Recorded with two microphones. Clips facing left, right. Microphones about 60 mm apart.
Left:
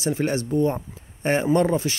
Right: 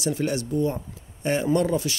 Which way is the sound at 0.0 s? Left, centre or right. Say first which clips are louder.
Left 2 dB; left.